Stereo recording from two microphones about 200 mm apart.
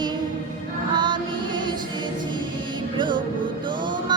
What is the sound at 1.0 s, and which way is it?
Music, 25° right (ahead or behind).